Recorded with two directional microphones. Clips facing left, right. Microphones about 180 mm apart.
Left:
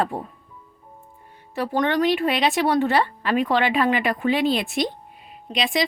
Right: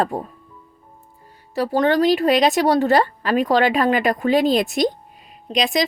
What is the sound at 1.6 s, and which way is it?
Speech, 35° right (ahead or behind).